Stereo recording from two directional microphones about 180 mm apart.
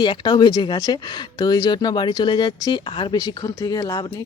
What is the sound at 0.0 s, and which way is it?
Speech, 25° left (ahead or behind).